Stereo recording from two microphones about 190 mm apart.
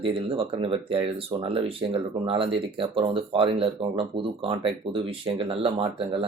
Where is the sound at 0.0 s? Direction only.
30° right (ahead or behind).